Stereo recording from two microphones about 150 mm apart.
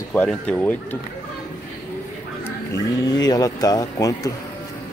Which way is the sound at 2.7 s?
25° left (ahead or behind).